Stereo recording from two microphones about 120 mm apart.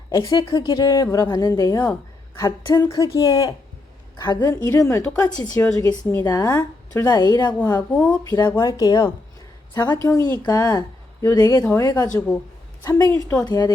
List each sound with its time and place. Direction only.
0.1 s speech: 30° left (ahead or behind)
7.6 s speech: 20° left (ahead or behind)
7.9 s speech: 10° left (ahead or behind)
8.2 s speech: 35° left (ahead or behind)
12.1 s speech: 5° left (ahead or behind)
12.8 s speech: 30° left (ahead or behind)